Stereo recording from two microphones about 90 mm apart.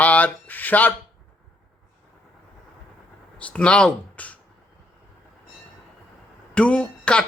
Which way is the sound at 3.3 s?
10° left (ahead or behind).